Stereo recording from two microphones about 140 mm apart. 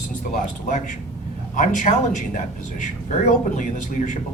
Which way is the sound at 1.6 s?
65° left (ahead or behind).